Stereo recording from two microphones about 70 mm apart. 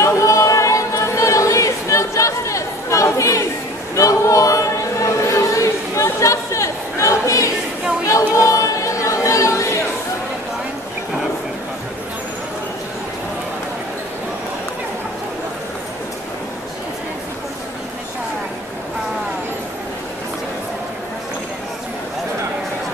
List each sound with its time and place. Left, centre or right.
0.0 s a sound: left
3.9 s choir: left
8.1 s chatter: left